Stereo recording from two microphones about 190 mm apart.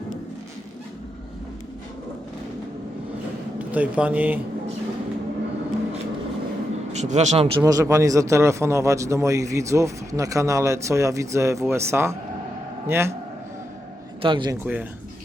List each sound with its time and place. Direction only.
3.6 s speech: 10° right (ahead or behind)
6.9 s speech: 35° right (ahead or behind); by 13.1 s 15° right (ahead or behind)
14.2 s a man's voice: 25° right (ahead or behind)
14.6 s speech: 10° right (ahead or behind)